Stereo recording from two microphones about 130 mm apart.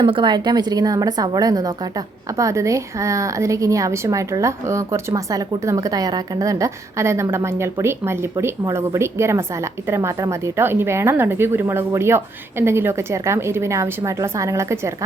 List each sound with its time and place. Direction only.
0.0 s a woman's voice: 40° right (ahead or behind); by 14.9 s 20° right (ahead or behind)